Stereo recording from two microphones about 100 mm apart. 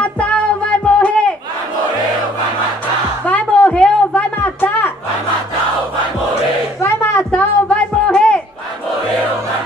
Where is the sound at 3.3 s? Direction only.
15° left (ahead or behind).